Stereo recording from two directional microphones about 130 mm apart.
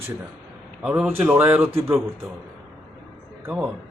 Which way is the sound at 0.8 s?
10° right (ahead or behind).